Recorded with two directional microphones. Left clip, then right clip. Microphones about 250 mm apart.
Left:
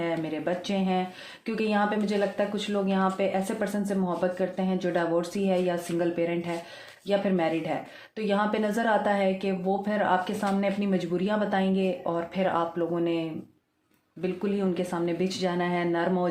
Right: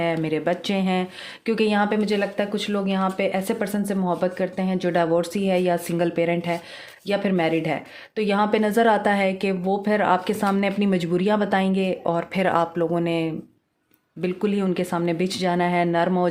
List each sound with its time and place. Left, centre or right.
0.0 s a woman's voice: right